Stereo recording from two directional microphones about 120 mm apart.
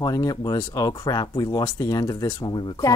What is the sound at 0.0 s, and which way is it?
Speech, 30° left (ahead or behind).